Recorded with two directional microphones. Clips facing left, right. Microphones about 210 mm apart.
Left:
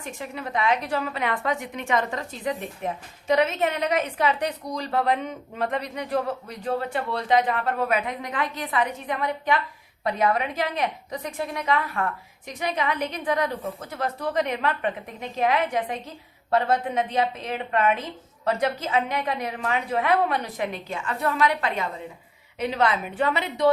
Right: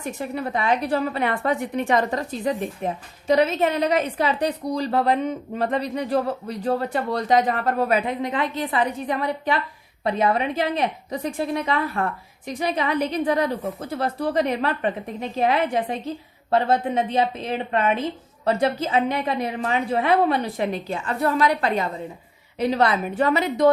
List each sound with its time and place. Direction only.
0.0 s a woman's voice: 40° right (ahead or behind)